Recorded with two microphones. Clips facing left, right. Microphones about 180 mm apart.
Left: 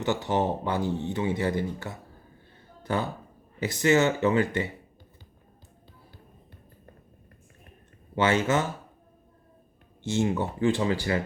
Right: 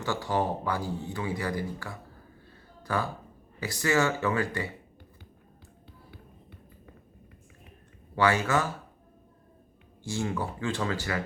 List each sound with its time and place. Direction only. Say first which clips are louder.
0.0 s speech: left 3 dB; 20° left (ahead or behind)
8.1 s speech: left 2 dB; 20° left (ahead or behind)
10.0 s speech: left 5 dB; 20° left (ahead or behind)